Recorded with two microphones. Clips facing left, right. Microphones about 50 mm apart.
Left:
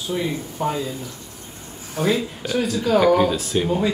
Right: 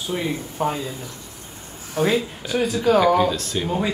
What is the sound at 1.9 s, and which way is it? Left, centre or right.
Speech, right.